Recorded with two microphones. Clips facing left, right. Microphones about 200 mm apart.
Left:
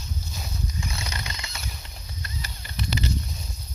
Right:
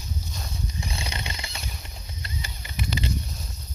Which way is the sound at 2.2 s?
25° right (ahead or behind).